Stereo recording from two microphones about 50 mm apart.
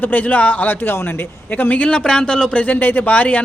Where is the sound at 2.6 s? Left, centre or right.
Left.